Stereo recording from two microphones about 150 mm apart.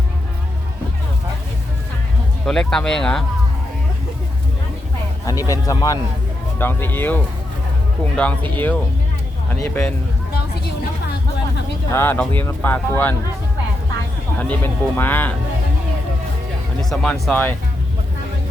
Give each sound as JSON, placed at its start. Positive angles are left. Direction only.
{"t": 2.5, "sound": "speech", "side_deg": 5}
{"t": 5.2, "sound": "speech", "side_deg": 25}
{"t": 11.9, "sound": "speech", "side_deg": 15}
{"t": 14.3, "sound": "speech", "side_deg": 10}
{"t": 16.9, "sound": "speech", "side_deg": 0}